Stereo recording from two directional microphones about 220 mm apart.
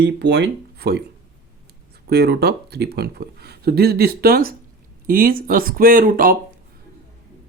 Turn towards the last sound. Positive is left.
turn(degrees=-40)  # may be behind; listen again after turning